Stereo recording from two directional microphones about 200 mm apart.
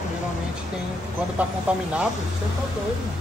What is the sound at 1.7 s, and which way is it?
Speech, 5° right (ahead or behind).